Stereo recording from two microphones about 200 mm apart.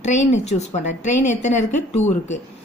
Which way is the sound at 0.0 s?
35° left (ahead or behind).